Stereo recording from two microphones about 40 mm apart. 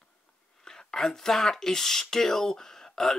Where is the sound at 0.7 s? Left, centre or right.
Centre.